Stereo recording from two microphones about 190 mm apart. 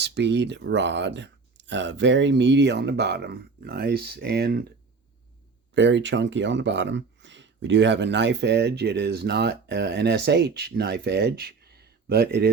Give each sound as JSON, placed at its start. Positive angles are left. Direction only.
{"t": 0.0, "sound": "speech", "side_deg": -65}
{"t": 5.7, "sound": "speech", "side_deg": -70}